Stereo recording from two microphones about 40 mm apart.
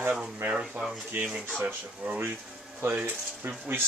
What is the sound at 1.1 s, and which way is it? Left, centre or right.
Speech, right.